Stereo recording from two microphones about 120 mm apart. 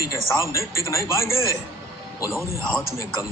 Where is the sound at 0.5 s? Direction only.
25° left (ahead or behind).